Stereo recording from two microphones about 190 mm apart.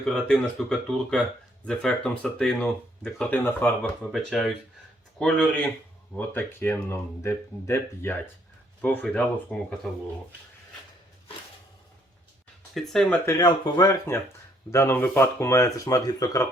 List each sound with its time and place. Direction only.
0.0 s speech: centre (ahead or behind)
12.7 s speech: 5° left (ahead or behind)
13.2 s speech: 20° left (ahead or behind)